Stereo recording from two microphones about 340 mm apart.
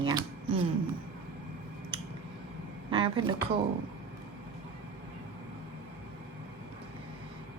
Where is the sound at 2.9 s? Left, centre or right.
Centre.